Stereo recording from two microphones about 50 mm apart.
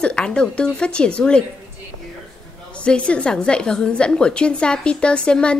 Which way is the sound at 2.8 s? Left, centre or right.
Left.